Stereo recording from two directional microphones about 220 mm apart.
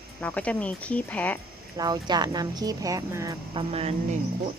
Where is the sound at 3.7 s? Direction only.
30° right (ahead or behind).